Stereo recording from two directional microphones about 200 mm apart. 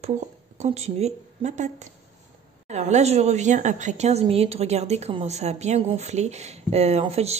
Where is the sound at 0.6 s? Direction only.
35° right (ahead or behind).